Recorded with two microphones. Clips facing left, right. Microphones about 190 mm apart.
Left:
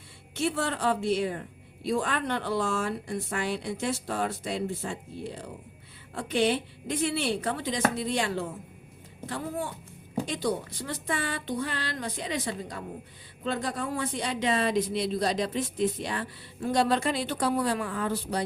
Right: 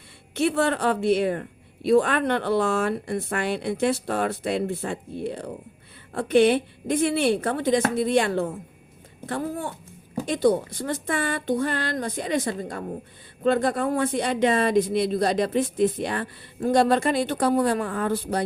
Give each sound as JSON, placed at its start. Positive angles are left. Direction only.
{"t": 0.3, "sound": "a woman's voice", "side_deg": -60}